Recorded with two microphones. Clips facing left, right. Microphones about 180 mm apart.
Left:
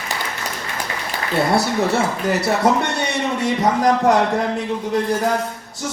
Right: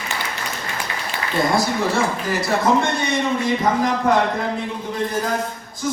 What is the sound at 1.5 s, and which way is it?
Speech, 65° left (ahead or behind).